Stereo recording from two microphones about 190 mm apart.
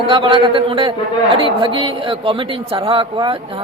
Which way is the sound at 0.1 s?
25° right (ahead or behind).